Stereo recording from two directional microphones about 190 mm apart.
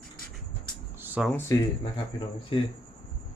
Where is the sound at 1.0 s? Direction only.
10° right (ahead or behind).